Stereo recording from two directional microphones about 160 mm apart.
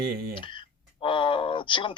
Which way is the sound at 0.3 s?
30° left (ahead or behind).